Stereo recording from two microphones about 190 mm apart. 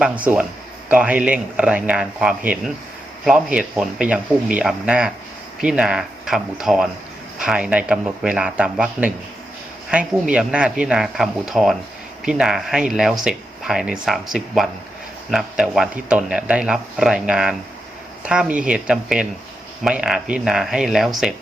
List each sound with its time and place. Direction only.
0.0 s speech: 5° right (ahead or behind)